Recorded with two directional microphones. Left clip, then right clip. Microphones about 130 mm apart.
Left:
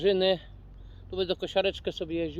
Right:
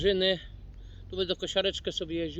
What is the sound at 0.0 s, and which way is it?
Speech, 25° right (ahead or behind).